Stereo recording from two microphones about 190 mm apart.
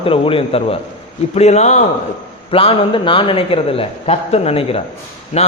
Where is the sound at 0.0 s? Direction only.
30° left (ahead or behind).